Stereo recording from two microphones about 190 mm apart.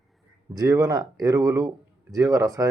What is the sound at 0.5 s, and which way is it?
Speech, 15° right (ahead or behind).